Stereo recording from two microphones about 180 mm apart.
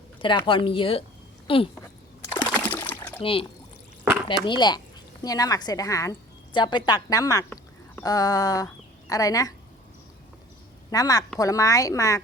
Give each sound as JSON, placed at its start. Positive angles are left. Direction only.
{"t": 0.2, "sound": "a woman's voice", "side_deg": 25}
{"t": 2.5, "sound": "water", "side_deg": 10}
{"t": 3.2, "sound": "speech", "side_deg": 30}
{"t": 4.4, "sound": "a woman's voice", "side_deg": 25}
{"t": 10.9, "sound": "a woman's voice", "side_deg": 20}